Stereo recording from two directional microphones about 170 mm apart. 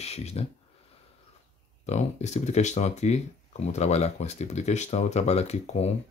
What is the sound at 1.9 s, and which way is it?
Speech, 40° left (ahead or behind).